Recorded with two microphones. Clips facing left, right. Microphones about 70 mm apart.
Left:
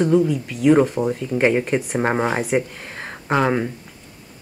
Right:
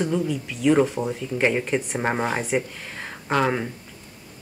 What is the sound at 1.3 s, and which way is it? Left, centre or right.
Speech, centre.